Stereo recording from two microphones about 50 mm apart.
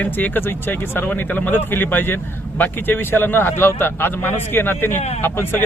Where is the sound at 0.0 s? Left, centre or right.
Left.